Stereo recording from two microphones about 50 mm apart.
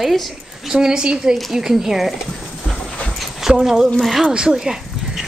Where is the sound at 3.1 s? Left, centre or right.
Centre.